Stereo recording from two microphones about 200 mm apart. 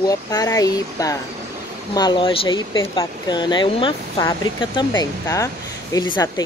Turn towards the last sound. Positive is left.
turn(degrees=20)  # may be behind; listen again after turning